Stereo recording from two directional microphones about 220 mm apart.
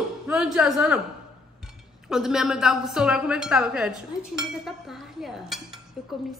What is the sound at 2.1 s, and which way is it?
A woman's voice, centre (ahead or behind).